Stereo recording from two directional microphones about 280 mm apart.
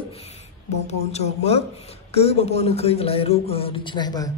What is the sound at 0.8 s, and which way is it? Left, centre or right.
A man's voice, left.